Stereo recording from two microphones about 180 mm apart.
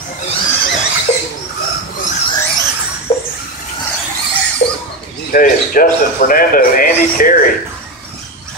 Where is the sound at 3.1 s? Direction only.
25° left (ahead or behind).